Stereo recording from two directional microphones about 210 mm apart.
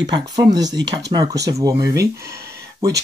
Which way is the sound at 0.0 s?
20° right (ahead or behind).